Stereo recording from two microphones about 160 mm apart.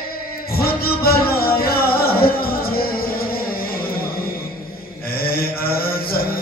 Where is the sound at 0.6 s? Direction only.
70° left (ahead or behind).